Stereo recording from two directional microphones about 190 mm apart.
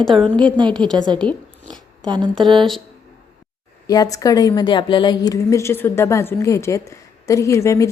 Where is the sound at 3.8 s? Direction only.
20° left (ahead or behind).